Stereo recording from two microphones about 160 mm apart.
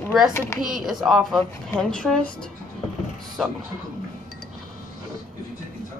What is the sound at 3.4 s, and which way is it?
Speech, centre (ahead or behind).